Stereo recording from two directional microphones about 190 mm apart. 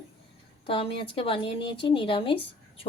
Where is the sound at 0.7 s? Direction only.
30° left (ahead or behind).